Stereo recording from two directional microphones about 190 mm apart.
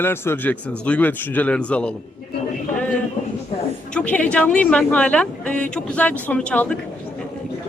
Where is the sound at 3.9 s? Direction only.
5° left (ahead or behind).